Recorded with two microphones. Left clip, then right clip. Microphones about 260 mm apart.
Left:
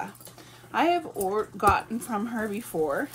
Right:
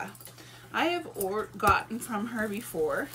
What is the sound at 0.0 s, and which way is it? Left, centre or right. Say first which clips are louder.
Speech: left 3 dB; centre.